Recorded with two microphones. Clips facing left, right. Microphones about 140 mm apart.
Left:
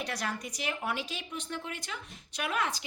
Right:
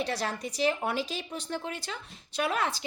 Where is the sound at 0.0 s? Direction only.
30° right (ahead or behind).